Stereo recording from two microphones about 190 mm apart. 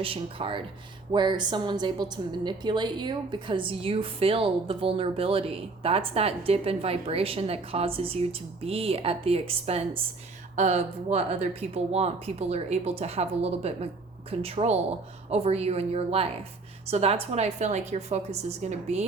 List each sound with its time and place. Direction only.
0.0 s a woman's voice: 30° right (ahead or behind)